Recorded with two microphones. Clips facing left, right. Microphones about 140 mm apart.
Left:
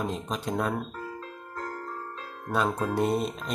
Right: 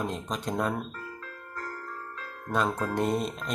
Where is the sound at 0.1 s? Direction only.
Centre (ahead or behind).